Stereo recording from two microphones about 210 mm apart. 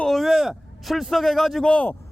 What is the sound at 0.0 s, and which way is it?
A man's voice, centre (ahead or behind).